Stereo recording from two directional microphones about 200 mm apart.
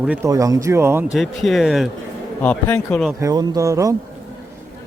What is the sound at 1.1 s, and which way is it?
Speech, centre (ahead or behind).